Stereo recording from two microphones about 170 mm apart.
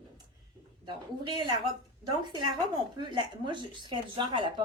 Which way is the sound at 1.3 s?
25° right (ahead or behind).